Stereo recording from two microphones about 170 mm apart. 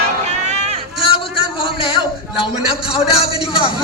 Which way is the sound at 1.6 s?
30° left (ahead or behind).